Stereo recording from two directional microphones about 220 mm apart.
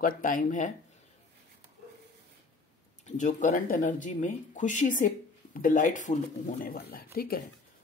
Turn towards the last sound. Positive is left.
turn(degrees=45)  # may be behind; listen again after turning